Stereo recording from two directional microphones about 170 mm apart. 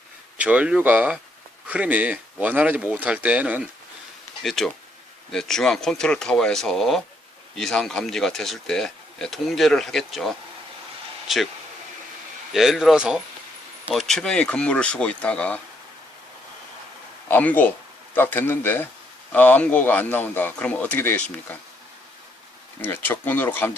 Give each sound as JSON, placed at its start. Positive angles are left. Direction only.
{"t": 0.3, "sound": "speech", "side_deg": -5}
{"t": 12.5, "sound": "speech", "side_deg": 0}
{"t": 17.2, "sound": "speech", "side_deg": 10}
{"t": 22.8, "sound": "speech", "side_deg": 10}